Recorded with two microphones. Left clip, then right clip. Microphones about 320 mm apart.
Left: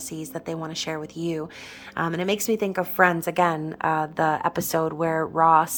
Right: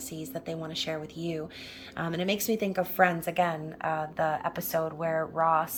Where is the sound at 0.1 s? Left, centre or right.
Centre.